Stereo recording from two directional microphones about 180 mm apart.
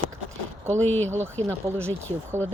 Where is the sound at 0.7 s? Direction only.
10° left (ahead or behind).